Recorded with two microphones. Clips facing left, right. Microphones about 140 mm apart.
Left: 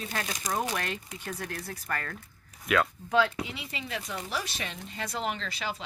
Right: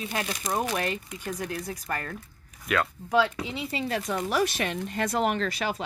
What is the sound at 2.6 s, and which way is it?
Speech, centre (ahead or behind).